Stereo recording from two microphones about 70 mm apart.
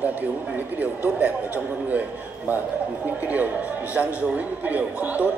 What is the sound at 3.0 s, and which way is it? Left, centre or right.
A man's voice, right.